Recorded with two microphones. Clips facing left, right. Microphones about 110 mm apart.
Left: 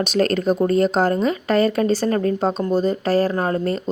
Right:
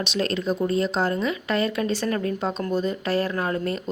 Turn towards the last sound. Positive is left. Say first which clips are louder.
# left 5 dB
turn(degrees=35)  # may be behind; listen again after turning